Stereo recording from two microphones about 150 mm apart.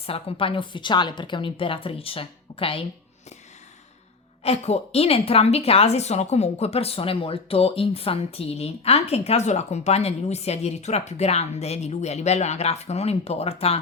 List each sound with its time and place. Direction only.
0.0 s a woman's voice: 40° left (ahead or behind)
4.4 s a woman's voice: 45° left (ahead or behind)